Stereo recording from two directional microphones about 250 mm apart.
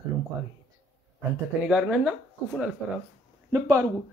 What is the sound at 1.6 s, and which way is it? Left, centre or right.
Speech, centre.